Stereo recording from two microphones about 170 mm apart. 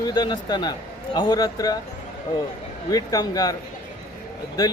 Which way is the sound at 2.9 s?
20° left (ahead or behind).